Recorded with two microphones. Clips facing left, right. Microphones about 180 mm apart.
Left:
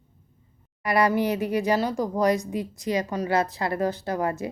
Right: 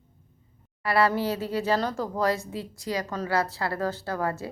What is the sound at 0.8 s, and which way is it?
Speech, 15° left (ahead or behind).